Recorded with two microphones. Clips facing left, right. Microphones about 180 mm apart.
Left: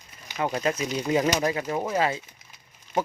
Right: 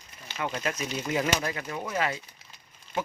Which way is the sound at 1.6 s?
40° left (ahead or behind).